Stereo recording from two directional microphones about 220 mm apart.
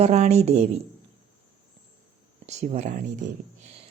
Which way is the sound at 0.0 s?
30° right (ahead or behind).